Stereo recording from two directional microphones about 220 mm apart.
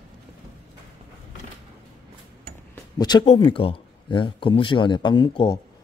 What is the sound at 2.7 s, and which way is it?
Speech, 20° left (ahead or behind).